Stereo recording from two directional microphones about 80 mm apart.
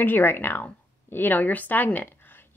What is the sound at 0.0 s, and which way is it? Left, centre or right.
A woman's voice, left.